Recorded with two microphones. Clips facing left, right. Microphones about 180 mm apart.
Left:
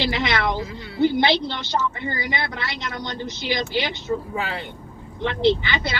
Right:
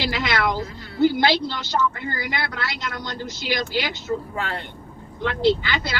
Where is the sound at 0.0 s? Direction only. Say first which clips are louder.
Left 1 dB; 20° left (ahead or behind).